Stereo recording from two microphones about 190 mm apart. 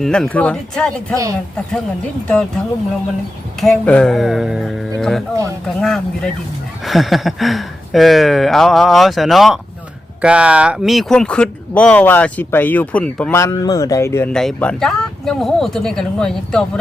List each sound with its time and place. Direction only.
0.0 s speech: 5° left (ahead or behind)
1.1 s speech: 15° right (ahead or behind)
3.6 s speech: 5° left (ahead or behind)